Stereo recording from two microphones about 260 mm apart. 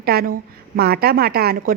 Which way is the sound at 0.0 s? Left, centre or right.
Right.